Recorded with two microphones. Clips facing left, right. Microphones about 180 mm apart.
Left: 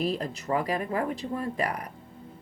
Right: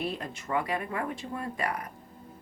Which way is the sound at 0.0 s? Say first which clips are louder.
Left 5 dB; 35° left (ahead or behind).